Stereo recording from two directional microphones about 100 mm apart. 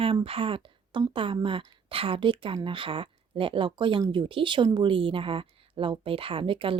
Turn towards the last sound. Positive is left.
turn(degrees=-60)  # may be behind; listen again after turning